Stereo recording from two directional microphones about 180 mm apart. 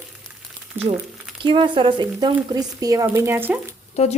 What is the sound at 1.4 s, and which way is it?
Speech, 25° right (ahead or behind).